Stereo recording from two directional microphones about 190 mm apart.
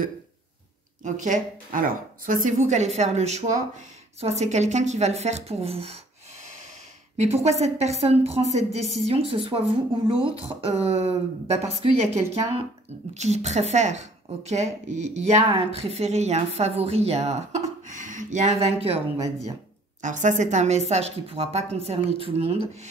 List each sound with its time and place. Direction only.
1.0 s speech: 40° right (ahead or behind)
7.2 s speech: 35° right (ahead or behind)
20.0 s speech: 40° right (ahead or behind)